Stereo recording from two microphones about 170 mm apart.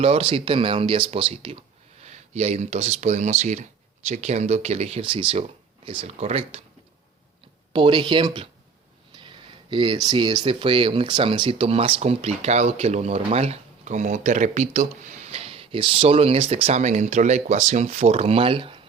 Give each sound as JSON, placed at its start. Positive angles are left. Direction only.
{"t": 0.0, "sound": "speech", "side_deg": -35}
{"t": 7.7, "sound": "speech", "side_deg": -30}